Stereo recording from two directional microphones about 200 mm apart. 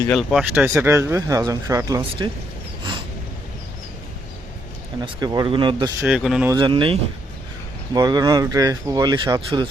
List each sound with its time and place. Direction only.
0.0 s speech: 5° left (ahead or behind)
0.5 s speech: 10° right (ahead or behind)
4.9 s speech: 20° right (ahead or behind)
6.1 s speech: 5° right (ahead or behind)
6.5 s speech: 25° right (ahead or behind)